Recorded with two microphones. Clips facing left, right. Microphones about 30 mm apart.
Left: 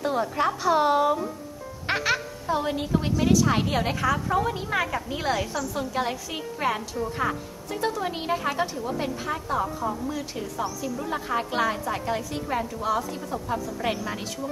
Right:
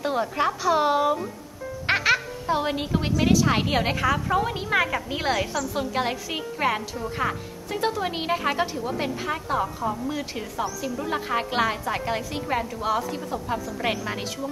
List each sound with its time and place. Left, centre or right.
0.0 s a woman's voice: centre
0.5 s a woman's voice: centre
1.9 s a woman's voice: right